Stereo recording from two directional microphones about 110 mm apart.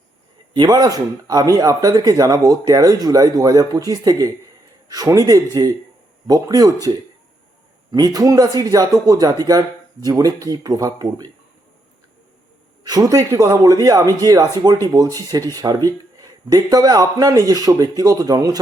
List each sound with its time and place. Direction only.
0.5 s speech: 40° right (ahead or behind)
7.9 s speech: 35° right (ahead or behind)
12.8 s speech: 35° right (ahead or behind)